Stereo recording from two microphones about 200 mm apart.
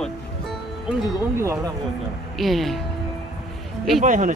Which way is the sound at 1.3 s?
15° right (ahead or behind).